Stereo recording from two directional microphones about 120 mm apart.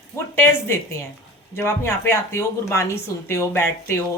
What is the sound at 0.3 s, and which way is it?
A woman's voice, 20° left (ahead or behind).